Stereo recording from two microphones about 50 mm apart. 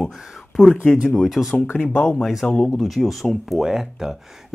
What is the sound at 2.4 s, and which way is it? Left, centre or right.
Speech, centre.